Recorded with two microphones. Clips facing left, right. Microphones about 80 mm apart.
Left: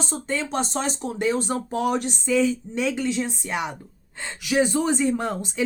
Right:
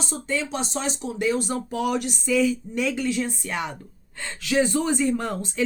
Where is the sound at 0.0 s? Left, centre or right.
Left.